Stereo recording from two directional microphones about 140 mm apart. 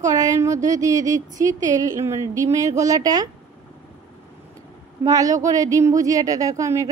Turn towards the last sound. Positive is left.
turn(degrees=-20)  # may be behind; listen again after turning